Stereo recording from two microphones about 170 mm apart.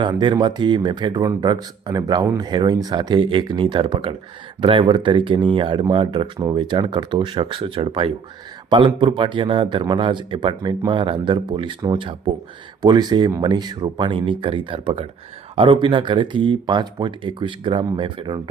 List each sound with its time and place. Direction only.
0.0 s speech: 25° right (ahead or behind)